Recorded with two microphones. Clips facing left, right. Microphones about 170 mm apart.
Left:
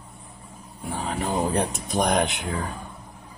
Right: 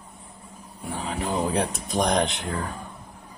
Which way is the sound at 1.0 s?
50° left (ahead or behind).